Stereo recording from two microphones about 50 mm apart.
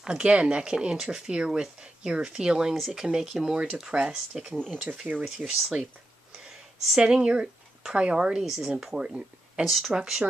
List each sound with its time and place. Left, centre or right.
0.1 s speech: right
6.4 s a sound: centre
7.0 s speech: centre
9.7 s speech: centre
9.9 s speech: centre